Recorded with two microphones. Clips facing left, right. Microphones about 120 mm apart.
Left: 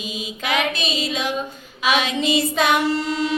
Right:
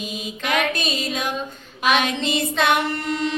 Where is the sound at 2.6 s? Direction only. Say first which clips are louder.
Left 2 dB; 55° right (ahead or behind).